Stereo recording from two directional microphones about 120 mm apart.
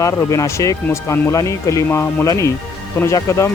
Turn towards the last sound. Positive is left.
turn(degrees=25)  # may be behind; listen again after turning